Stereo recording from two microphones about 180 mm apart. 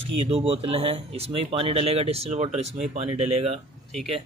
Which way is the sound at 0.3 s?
30° right (ahead or behind).